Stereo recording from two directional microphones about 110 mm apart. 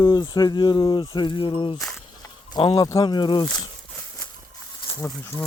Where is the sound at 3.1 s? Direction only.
40° left (ahead or behind).